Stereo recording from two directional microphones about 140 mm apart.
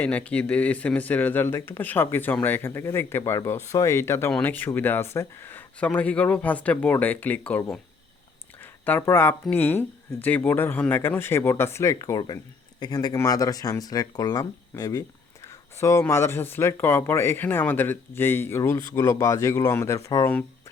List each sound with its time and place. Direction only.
0.0 s speech: 10° left (ahead or behind)
8.6 s speech: 15° left (ahead or behind)